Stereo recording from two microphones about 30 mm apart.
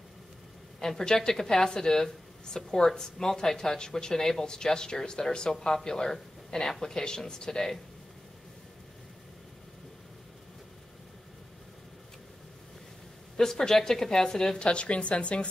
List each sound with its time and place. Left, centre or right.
0.7 s speech: left
13.4 s a woman's voice: centre
14.6 s a woman's voice: left